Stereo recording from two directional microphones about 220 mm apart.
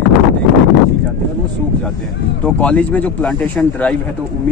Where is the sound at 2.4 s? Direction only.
5° left (ahead or behind).